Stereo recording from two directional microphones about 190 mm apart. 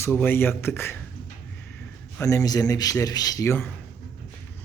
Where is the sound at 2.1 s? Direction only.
15° left (ahead or behind).